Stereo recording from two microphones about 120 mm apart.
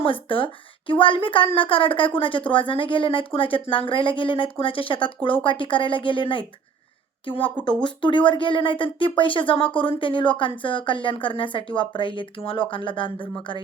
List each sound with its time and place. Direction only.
0.0 s speech: 45° left (ahead or behind)